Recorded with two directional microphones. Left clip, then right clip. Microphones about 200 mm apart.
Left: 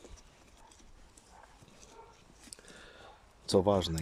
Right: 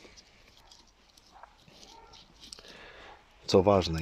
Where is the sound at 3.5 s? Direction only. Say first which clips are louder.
Right 5 dB; centre (ahead or behind).